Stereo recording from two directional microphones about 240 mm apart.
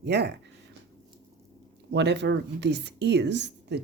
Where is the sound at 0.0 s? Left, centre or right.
Right.